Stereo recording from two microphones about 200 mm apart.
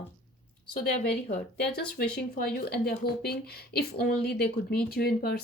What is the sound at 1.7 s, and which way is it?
A woman's voice, 50° left (ahead or behind).